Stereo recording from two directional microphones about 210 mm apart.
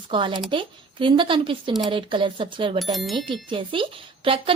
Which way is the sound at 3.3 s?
25° right (ahead or behind).